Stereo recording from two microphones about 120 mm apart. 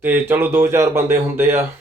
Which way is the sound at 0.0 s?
15° right (ahead or behind).